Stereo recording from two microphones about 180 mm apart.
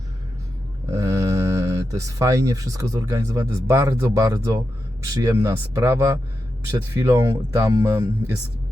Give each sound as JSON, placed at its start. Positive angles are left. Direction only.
{"t": 0.9, "sound": "speech", "side_deg": -15}